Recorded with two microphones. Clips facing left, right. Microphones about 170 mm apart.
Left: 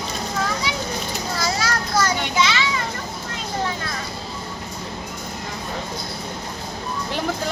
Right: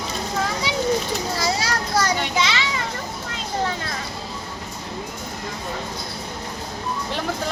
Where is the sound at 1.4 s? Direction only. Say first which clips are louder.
Left 3 dB; 30° right (ahead or behind).